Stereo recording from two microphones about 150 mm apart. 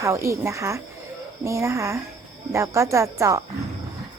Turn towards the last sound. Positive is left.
turn(degrees=-20)  # may be behind; listen again after turning